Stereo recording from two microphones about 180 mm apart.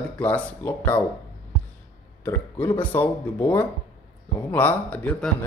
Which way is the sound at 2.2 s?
10° left (ahead or behind).